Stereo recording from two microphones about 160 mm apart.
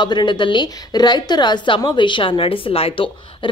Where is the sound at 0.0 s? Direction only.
30° left (ahead or behind).